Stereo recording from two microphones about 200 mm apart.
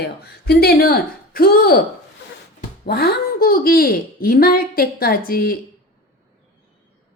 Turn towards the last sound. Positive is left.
turn(degrees=50)  # may be behind; listen again after turning